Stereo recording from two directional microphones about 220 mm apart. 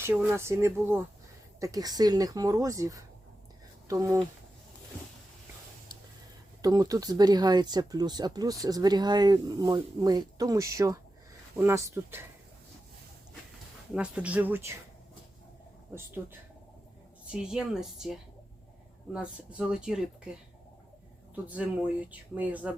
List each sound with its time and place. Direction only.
0.0 s speech: 10° right (ahead or behind)
6.6 s speech: 15° right (ahead or behind)
13.9 s speech: 5° right (ahead or behind)
17.3 s speech: 5° right (ahead or behind)
21.4 s speech: 5° right (ahead or behind)